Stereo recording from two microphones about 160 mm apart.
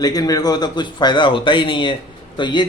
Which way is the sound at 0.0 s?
25° left (ahead or behind).